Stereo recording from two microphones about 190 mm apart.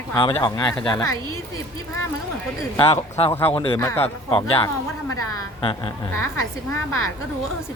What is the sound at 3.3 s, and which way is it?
Speech, 10° left (ahead or behind).